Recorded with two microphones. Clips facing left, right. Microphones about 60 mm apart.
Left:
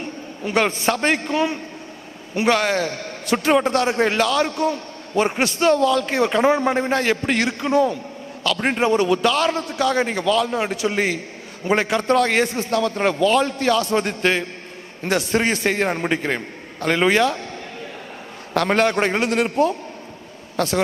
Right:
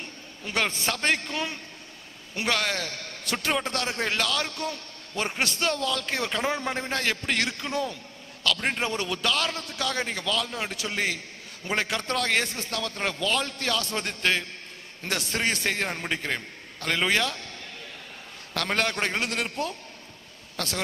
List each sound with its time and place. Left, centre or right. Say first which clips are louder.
0.0 s a man's voice: left 10 dB; centre
18.5 s a man's voice: left 9 dB; centre